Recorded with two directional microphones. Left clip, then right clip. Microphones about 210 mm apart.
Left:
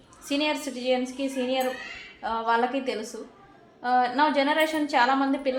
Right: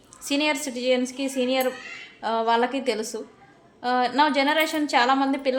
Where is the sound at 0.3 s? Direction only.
40° right (ahead or behind).